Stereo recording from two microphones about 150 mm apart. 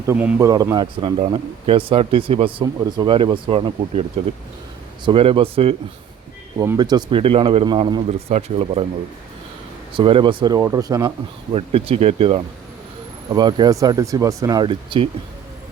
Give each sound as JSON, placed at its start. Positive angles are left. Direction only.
{"t": 0.1, "sound": "a man's voice", "side_deg": -15}
{"t": 0.4, "sound": "speech", "side_deg": -25}
{"t": 5.0, "sound": "speech", "side_deg": -35}
{"t": 6.6, "sound": "speech", "side_deg": -25}
{"t": 8.3, "sound": "speech", "side_deg": -45}
{"t": 9.9, "sound": "speech", "side_deg": -35}
{"t": 11.5, "sound": "speech", "side_deg": -40}
{"t": 13.3, "sound": "speech", "side_deg": -30}